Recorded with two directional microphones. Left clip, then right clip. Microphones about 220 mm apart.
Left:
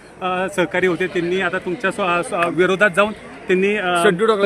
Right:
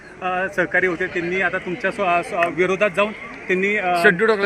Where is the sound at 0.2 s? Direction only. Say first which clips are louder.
Left 1 dB; 45° left (ahead or behind).